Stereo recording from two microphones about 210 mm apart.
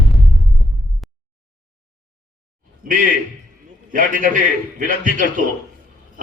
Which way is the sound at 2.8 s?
40° right (ahead or behind).